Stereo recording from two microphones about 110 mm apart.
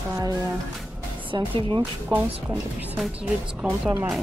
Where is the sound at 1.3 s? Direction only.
40° right (ahead or behind).